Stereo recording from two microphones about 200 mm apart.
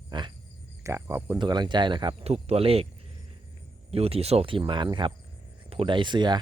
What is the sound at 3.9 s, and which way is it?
A man's voice, 30° right (ahead or behind).